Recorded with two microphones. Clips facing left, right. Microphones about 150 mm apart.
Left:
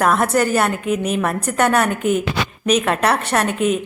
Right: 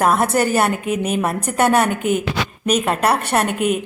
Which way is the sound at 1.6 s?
30° right (ahead or behind).